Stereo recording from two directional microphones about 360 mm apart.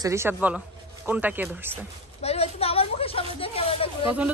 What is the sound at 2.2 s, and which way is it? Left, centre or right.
A woman's voice, centre.